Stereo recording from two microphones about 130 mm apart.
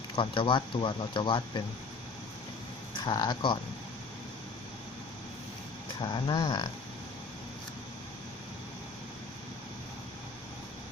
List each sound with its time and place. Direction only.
0.2 s speech: 40° left (ahead or behind)
3.0 s speech: 35° left (ahead or behind)
6.0 s speech: 35° left (ahead or behind)